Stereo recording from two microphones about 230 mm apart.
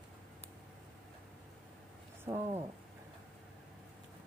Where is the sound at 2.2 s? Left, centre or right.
Centre.